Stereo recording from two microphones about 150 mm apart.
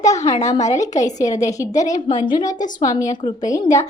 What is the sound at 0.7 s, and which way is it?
A woman's voice, 20° left (ahead or behind).